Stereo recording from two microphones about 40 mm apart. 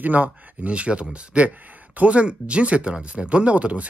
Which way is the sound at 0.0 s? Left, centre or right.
Right.